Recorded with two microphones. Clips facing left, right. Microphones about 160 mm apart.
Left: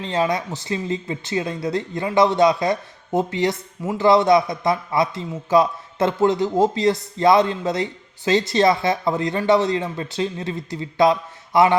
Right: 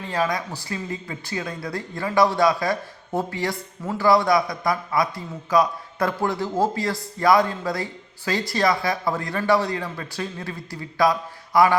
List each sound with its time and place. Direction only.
0.0 s speech: 20° left (ahead or behind)